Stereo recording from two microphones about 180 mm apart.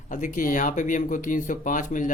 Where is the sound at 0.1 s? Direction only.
45° left (ahead or behind).